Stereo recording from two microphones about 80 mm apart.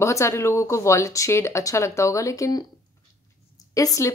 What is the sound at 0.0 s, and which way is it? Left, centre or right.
Speech, left.